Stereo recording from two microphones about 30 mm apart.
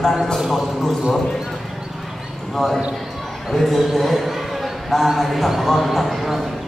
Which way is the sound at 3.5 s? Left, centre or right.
Centre.